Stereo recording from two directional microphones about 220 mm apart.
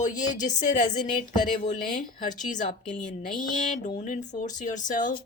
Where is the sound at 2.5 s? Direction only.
35° left (ahead or behind).